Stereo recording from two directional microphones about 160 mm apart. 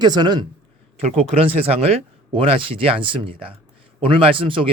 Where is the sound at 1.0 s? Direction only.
40° right (ahead or behind).